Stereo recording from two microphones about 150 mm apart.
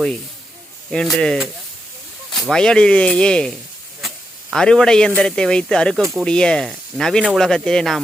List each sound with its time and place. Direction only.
0.9 s speech: centre (ahead or behind)
2.5 s speech: 5° left (ahead or behind)
4.5 s speech: 5° left (ahead or behind)